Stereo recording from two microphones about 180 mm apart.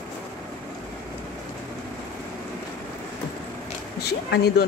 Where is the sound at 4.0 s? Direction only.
65° left (ahead or behind).